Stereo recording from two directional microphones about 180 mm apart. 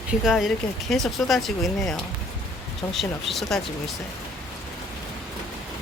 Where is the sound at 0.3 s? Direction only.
Centre (ahead or behind).